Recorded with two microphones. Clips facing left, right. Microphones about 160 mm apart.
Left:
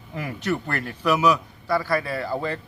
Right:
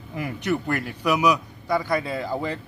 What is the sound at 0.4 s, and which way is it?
A man's voice, 15° right (ahead or behind).